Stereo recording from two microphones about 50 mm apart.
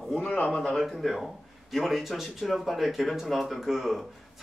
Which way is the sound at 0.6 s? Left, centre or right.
Centre.